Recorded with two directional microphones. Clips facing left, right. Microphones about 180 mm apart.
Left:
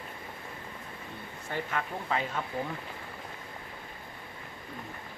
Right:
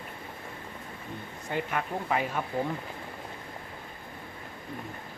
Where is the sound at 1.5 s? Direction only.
15° right (ahead or behind).